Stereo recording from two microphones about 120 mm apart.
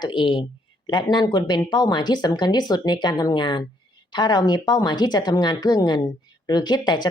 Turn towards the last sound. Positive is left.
turn(degrees=40)  # may be behind; listen again after turning